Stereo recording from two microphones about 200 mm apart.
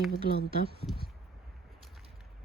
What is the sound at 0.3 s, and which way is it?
Speech, 50° right (ahead or behind).